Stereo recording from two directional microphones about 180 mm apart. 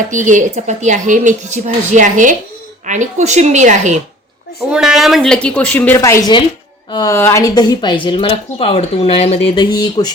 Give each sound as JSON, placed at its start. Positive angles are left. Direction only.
{"t": 0.1, "sound": "a woman's voice", "side_deg": -45}
{"t": 4.7, "sound": "speech", "side_deg": -5}
{"t": 9.6, "sound": "speech", "side_deg": 20}